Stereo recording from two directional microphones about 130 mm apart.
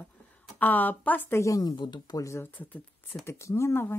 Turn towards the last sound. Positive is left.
turn(degrees=20)  # may be behind; listen again after turning